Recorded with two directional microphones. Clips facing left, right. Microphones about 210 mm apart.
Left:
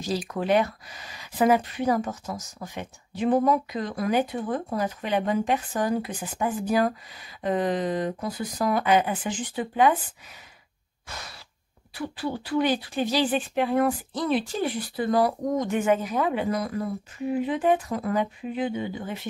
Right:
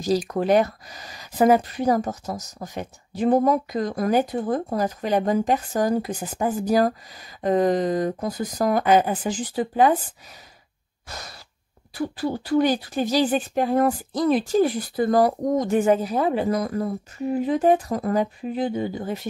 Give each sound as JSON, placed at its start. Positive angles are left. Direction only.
{"t": 0.0, "sound": "speech", "side_deg": -40}
{"t": 11.1, "sound": "breathing", "side_deg": -40}
{"t": 11.9, "sound": "speech", "side_deg": -40}